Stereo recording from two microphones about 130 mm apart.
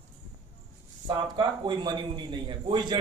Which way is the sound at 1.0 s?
35° right (ahead or behind).